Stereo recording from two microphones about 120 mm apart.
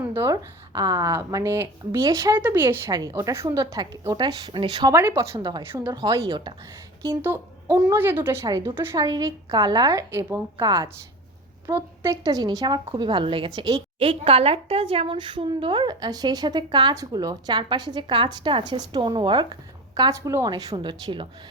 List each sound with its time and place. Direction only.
0.0 s a woman's voice: 20° right (ahead or behind)
4.4 s a woman's voice: 40° right (ahead or behind)
4.9 s a woman's voice: 20° right (ahead or behind)
5.3 s a woman's voice: 35° right (ahead or behind)
7.0 s a woman's voice: 20° right (ahead or behind)
9.0 s a woman's voice: 30° right (ahead or behind)
13.6 s a woman's voice: 35° right (ahead or behind)
14.0 s a woman's voice: 50° right (ahead or behind)
20.0 s a woman's voice: 25° right (ahead or behind)